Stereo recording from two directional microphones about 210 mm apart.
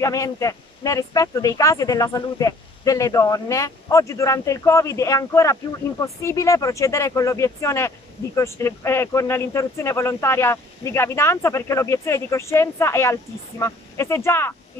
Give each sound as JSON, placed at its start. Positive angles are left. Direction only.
{"t": 0.0, "sound": "speech", "side_deg": 15}